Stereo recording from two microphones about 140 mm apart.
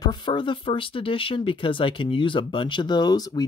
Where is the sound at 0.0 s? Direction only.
35° left (ahead or behind).